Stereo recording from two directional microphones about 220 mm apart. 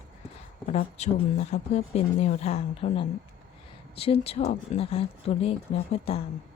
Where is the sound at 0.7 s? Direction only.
30° left (ahead or behind).